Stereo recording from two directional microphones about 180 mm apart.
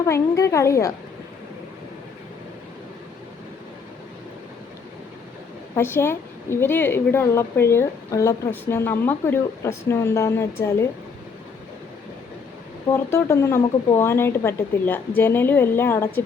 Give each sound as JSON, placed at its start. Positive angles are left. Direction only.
{"t": 0.0, "sound": "a woman's voice", "side_deg": 15}
{"t": 5.7, "sound": "a woman's voice", "side_deg": 15}
{"t": 12.9, "sound": "a woman's voice", "side_deg": 15}